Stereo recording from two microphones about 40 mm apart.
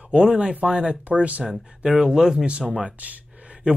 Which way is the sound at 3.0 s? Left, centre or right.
Right.